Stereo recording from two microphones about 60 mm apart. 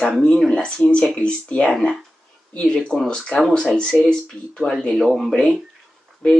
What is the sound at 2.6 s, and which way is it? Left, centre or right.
Speech, centre.